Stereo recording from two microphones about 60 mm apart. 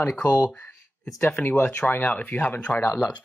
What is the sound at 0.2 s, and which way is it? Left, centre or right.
Speech, left.